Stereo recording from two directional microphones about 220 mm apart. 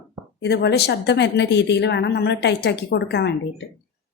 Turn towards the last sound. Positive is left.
turn(degrees=55)  # may be behind; listen again after turning